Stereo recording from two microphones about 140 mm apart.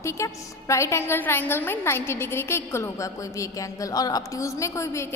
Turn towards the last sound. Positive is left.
turn(degrees=20)  # may be behind; listen again after turning